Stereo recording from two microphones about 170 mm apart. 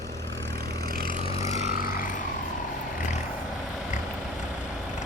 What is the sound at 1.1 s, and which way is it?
Vehicle, 35° left (ahead or behind).